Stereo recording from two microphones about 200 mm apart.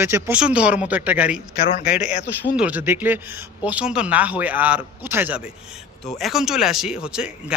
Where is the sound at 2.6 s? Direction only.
5° right (ahead or behind).